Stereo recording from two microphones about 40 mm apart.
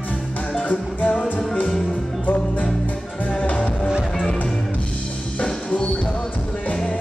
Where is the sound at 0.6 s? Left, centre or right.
Left.